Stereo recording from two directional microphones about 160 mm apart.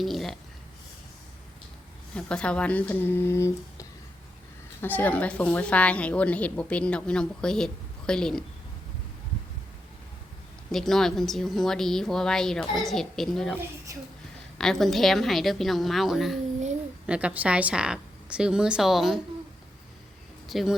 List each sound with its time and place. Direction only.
0.0 s speech: centre (ahead or behind)
2.1 s a woman's voice: 5° left (ahead or behind)
10.7 s a woman's voice: centre (ahead or behind)
13.9 s speech: 20° right (ahead or behind)
14.6 s a woman's voice: centre (ahead or behind)
20.5 s a woman's voice: centre (ahead or behind)